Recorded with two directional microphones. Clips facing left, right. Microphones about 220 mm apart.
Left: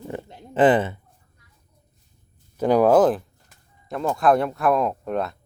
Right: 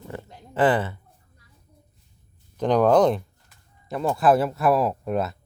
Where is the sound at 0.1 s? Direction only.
25° left (ahead or behind).